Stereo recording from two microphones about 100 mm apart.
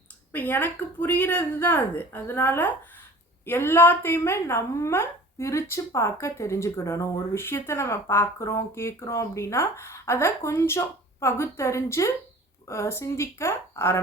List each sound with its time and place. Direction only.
0.3 s a woman's voice: 20° left (ahead or behind)